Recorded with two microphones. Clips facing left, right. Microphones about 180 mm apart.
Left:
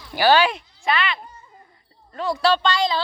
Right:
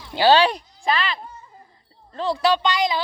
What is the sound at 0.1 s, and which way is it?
Speech, 25° right (ahead or behind).